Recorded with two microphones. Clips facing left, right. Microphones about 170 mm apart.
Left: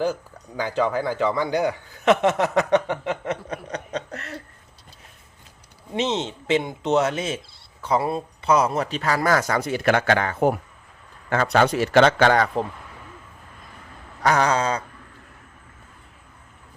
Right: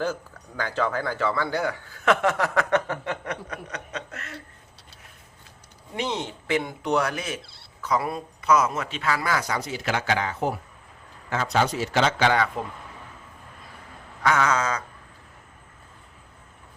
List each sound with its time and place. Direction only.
0.0 s speech: 15° left (ahead or behind); by 4.4 s 35° left (ahead or behind)
5.9 s speech: 25° left (ahead or behind); by 12.5 s 50° left (ahead or behind)
14.2 s speech: 35° left (ahead or behind)